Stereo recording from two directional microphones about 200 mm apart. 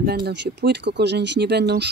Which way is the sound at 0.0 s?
50° right (ahead or behind).